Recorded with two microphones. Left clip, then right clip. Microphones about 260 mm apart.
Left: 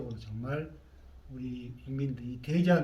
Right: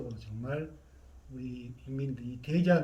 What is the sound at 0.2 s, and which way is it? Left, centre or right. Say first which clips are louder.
A man's voice: even; centre.